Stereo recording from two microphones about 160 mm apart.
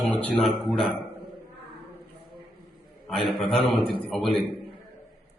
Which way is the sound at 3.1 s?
Centre (ahead or behind).